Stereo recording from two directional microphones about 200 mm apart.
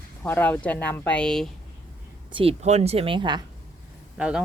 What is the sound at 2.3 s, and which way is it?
Speech, 30° right (ahead or behind).